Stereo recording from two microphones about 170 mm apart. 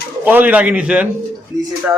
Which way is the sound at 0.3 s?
10° right (ahead or behind).